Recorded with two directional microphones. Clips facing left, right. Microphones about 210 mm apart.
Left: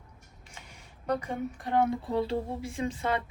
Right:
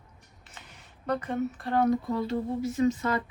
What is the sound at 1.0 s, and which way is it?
Speech, 10° left (ahead or behind).